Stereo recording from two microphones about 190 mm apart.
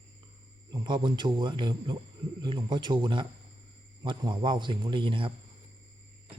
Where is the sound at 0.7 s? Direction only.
25° right (ahead or behind).